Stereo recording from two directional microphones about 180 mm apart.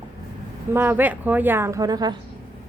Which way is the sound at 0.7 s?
10° right (ahead or behind).